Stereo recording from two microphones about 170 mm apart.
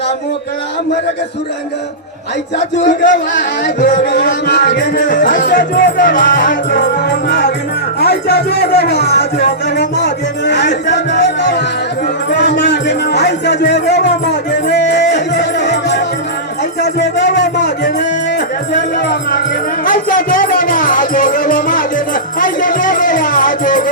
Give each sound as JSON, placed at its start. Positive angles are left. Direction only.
{"t": 2.6, "sound": "speech", "side_deg": 50}
{"t": 7.0, "sound": "music", "side_deg": 75}
{"t": 7.9, "sound": "speech", "side_deg": 70}
{"t": 9.7, "sound": "music", "side_deg": 90}
{"t": 18.7, "sound": "music", "side_deg": 55}